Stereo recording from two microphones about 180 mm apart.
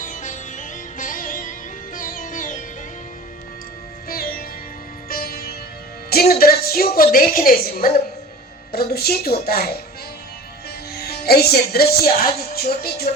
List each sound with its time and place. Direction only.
0.0 s music: 45° left (ahead or behind)
4.1 s music: 55° left (ahead or behind)
6.1 s a woman's voice: 60° left (ahead or behind)
10.9 s a woman's voice: 60° left (ahead or behind)